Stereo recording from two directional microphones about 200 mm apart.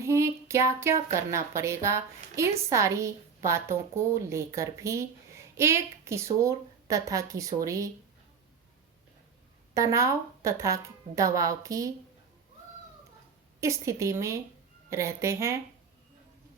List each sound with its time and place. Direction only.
0.0 s a woman's voice: 15° right (ahead or behind)
9.7 s a woman's voice: 15° right (ahead or behind)
13.6 s a woman's voice: 15° right (ahead or behind)